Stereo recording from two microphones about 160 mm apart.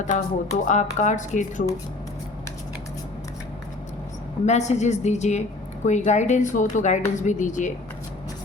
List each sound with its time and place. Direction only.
0.0 s speech: 50° left (ahead or behind)
4.4 s speech: 45° left (ahead or behind)